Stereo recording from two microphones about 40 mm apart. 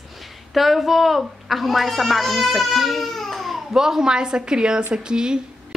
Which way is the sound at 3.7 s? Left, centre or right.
Centre.